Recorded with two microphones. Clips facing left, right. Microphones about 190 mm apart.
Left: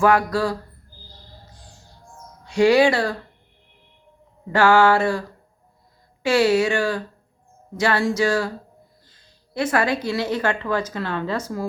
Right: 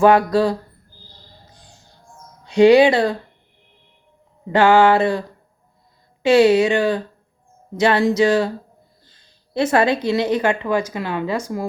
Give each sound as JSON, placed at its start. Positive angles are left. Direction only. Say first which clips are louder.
{"t": 0.0, "sound": "speech", "louder": "right 5 dB", "side_deg": -20}
{"t": 1.5, "sound": "music", "louder": "left 1 dB", "side_deg": -20}
{"t": 2.4, "sound": "speech", "louder": "right 5 dB", "side_deg": -20}
{"t": 4.5, "sound": "speech", "louder": "right 3 dB", "side_deg": -20}
{"t": 6.2, "sound": "a woman's voice", "louder": "right 5 dB", "side_deg": -20}